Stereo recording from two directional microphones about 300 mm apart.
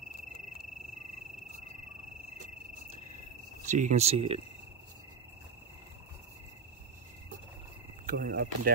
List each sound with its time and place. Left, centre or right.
3.6 s speech: right
8.1 s speech: right